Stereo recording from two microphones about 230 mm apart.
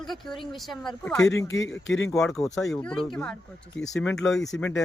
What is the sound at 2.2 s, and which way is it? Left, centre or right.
Speech, centre.